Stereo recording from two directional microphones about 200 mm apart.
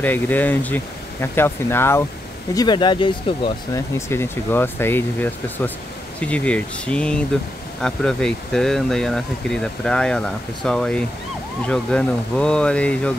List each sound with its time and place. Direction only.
0.0 s speech: 10° left (ahead or behind)
4.1 s speech: 10° left (ahead or behind)